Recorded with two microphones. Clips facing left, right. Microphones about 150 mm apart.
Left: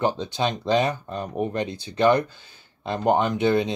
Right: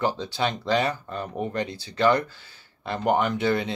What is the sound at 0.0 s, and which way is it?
Speech, 20° left (ahead or behind).